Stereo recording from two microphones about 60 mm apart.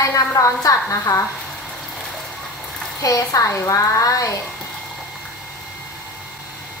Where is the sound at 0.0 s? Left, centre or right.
Left.